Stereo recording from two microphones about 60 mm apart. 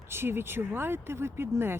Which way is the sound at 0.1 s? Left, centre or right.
Right.